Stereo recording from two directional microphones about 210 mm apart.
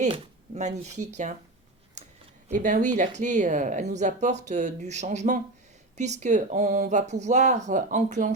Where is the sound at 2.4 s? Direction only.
35° right (ahead or behind).